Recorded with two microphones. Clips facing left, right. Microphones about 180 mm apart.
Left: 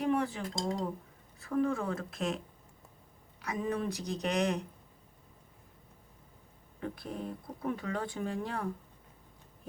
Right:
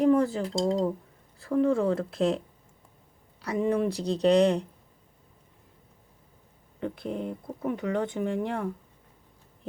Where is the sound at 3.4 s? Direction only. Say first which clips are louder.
Right 8 dB; 30° right (ahead or behind).